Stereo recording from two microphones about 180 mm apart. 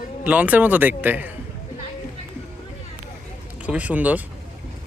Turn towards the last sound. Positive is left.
turn(degrees=-10)  # may be behind; listen again after turning